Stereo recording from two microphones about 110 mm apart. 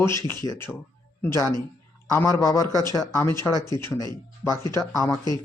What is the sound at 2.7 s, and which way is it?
Speech, 35° right (ahead or behind).